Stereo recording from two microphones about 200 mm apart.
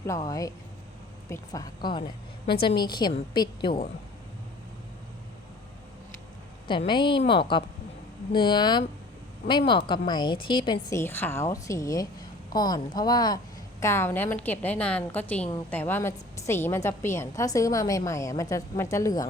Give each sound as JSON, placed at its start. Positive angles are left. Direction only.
{"t": 0.1, "sound": "a woman's voice", "side_deg": 15}
{"t": 6.7, "sound": "a woman's voice", "side_deg": 25}